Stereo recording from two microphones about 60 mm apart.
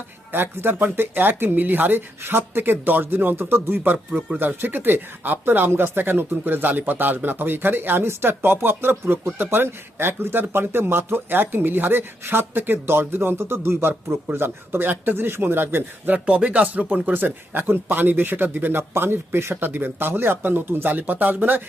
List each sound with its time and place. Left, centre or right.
0.3 s speech: right
3.9 s speech: right
4.4 s speech: right
18.8 s speech: right